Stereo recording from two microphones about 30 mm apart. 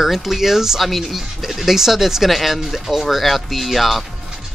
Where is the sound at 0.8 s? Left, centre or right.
Centre.